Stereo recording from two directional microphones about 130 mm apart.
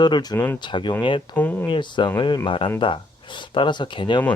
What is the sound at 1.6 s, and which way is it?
Speech, 35° left (ahead or behind).